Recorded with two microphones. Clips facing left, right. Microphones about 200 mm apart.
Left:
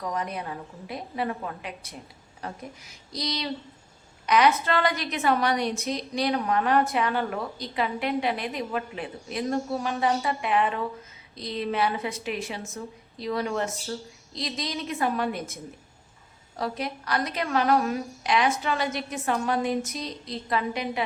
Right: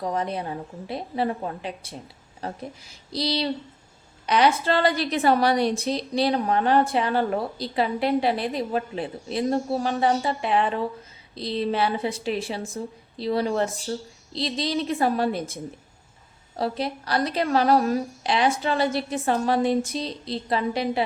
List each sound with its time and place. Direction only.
0.0 s a woman's voice: 30° right (ahead or behind)